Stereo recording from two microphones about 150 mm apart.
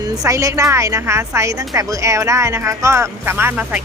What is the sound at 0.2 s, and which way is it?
A woman's voice, 20° right (ahead or behind).